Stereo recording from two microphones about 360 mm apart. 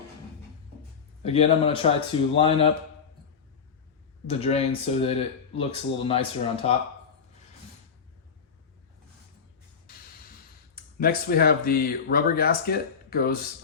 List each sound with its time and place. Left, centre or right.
1.2 s speech: centre
4.3 s speech: centre
10.8 s speech: left